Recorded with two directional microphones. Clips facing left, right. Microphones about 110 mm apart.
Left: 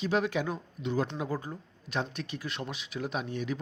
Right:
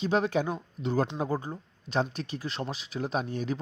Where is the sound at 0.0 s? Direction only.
35° right (ahead or behind).